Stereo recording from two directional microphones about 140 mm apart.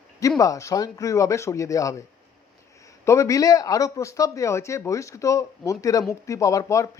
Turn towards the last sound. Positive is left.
turn(degrees=25)  # may be behind; listen again after turning